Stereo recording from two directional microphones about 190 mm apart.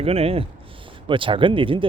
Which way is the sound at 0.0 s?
30° right (ahead or behind).